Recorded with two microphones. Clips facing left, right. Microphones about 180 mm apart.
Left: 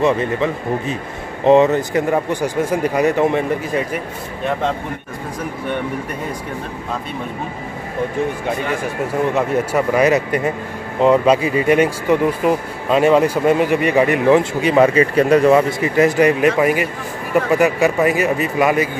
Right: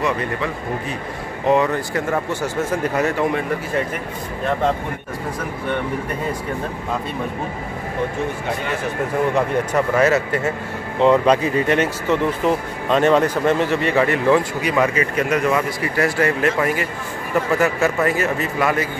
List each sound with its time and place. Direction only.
1.4 s speech: 25° left (ahead or behind)
9.3 s speech: 10° left (ahead or behind)